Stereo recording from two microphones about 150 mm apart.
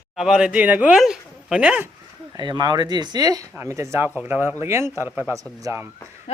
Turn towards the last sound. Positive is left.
turn(degrees=-20)  # may be behind; listen again after turning